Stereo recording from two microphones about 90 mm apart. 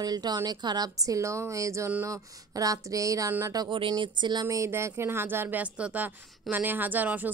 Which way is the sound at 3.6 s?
70° right (ahead or behind).